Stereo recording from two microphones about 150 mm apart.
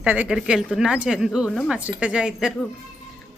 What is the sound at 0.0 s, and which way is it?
A woman's voice, 10° right (ahead or behind).